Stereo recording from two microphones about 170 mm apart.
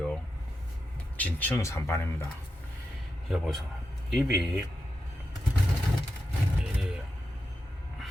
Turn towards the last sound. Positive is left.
turn(degrees=-5)  # may be behind; listen again after turning